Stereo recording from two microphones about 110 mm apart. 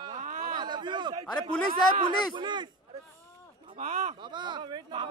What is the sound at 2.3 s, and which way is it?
Speech, 45° right (ahead or behind).